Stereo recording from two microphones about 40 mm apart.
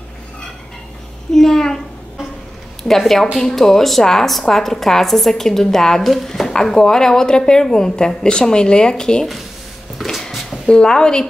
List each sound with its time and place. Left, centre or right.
1.3 s speech: centre
2.8 s speech: centre
3.3 s speech: centre
10.0 s a sound: centre
10.7 s speech: centre